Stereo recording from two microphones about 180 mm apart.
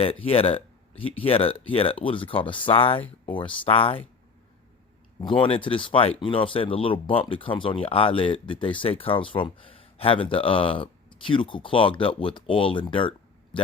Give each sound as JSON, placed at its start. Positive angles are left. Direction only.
{"t": 0.0, "sound": "speech", "side_deg": 30}
{"t": 5.2, "sound": "speech", "side_deg": 30}